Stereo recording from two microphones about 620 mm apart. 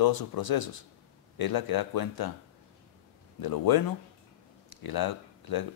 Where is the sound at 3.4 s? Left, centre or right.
Left.